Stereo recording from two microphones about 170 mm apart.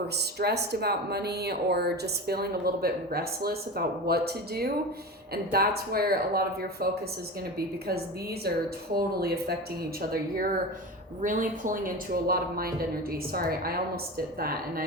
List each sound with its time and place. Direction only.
0.2 s speech: 70° right (ahead or behind)
9.0 s a woman's voice: 65° right (ahead or behind)